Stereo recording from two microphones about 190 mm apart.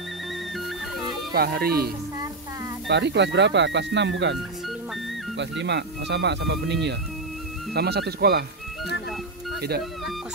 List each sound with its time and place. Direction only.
1.3 s speech: 55° right (ahead or behind)
2.9 s speech: 65° right (ahead or behind)
5.4 s speech: 70° right (ahead or behind)
9.6 s speech: 55° right (ahead or behind)